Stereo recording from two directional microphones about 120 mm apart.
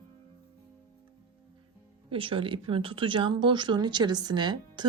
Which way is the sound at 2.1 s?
50° right (ahead or behind).